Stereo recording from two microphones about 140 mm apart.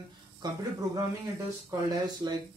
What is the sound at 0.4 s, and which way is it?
Speech, 30° right (ahead or behind).